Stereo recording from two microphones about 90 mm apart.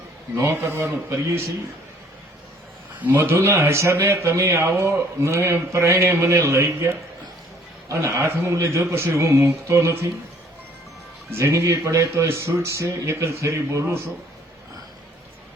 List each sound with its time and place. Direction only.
0.3 s a man's voice: 30° right (ahead or behind)
3.0 s a man's voice: 25° right (ahead or behind)
11.3 s a man's voice: 30° right (ahead or behind)